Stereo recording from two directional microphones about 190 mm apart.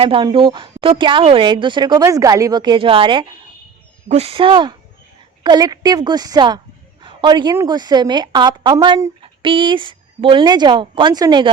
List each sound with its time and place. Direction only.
0.0 s a woman's voice: 25° right (ahead or behind)